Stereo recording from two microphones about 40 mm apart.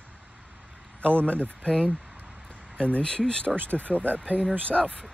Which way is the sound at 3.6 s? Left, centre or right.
Left.